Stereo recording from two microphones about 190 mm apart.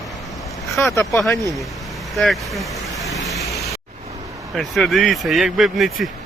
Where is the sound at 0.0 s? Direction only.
Centre (ahead or behind).